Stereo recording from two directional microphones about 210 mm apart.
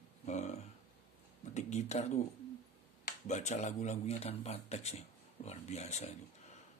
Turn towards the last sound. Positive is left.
turn(degrees=30)  # may be behind; listen again after turning